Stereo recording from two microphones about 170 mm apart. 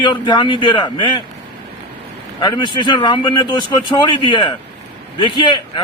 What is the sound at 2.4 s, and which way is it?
A man's voice, 25° left (ahead or behind).